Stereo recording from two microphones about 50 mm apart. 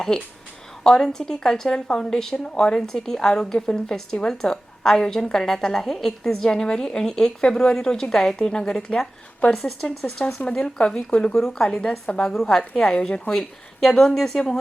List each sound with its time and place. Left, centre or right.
0.1 s a woman's voice: centre
11.3 s a woman's voice: centre